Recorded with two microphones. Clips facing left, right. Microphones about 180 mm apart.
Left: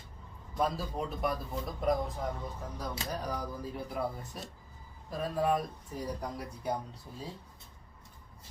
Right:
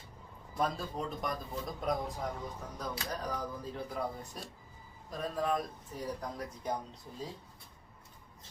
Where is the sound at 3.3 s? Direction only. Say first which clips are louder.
Left 1 dB; 10° left (ahead or behind).